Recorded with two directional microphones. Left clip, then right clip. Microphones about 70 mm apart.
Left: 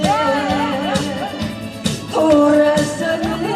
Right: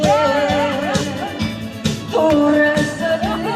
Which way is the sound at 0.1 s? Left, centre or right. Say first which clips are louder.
Right 2 dB; centre.